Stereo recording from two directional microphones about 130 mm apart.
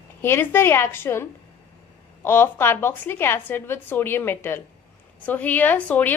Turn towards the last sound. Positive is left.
turn(degrees=15)  # may be behind; listen again after turning